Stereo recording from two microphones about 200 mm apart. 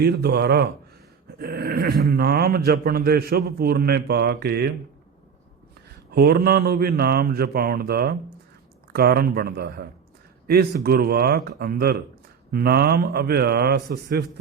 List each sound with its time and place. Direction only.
0.0 s a man's voice: 55° right (ahead or behind)
6.1 s a man's voice: 50° right (ahead or behind)